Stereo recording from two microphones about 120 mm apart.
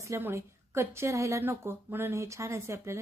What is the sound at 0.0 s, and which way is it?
A woman's voice, 20° right (ahead or behind).